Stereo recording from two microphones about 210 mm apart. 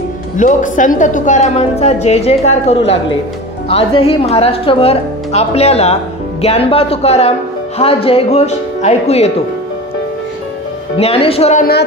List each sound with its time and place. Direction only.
0.4 s a woman's voice: 35° left (ahead or behind)
11.0 s speech: 30° left (ahead or behind)